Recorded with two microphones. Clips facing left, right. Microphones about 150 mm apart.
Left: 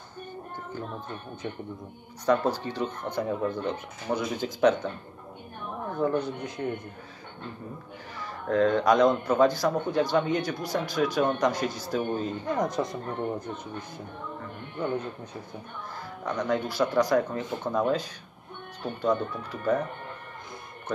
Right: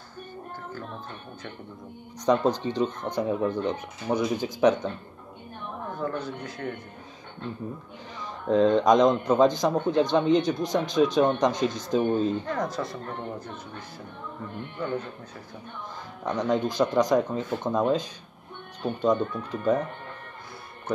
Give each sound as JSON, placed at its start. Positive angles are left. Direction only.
{"t": 2.2, "sound": "a man's voice", "side_deg": -20}
{"t": 5.9, "sound": "speech", "side_deg": 20}
{"t": 8.5, "sound": "a man's voice", "side_deg": -20}
{"t": 12.4, "sound": "speech", "side_deg": 20}
{"t": 16.3, "sound": "speech", "side_deg": -20}